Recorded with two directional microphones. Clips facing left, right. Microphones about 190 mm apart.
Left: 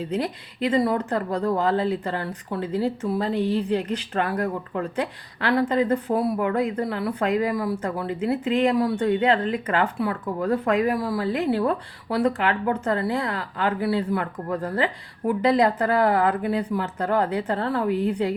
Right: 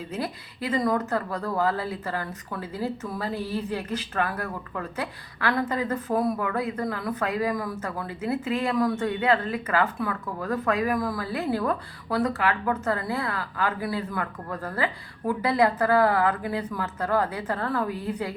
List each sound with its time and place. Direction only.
0.6 s speech: 30° left (ahead or behind)